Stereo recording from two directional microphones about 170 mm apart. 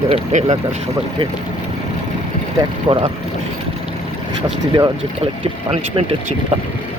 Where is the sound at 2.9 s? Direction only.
25° right (ahead or behind).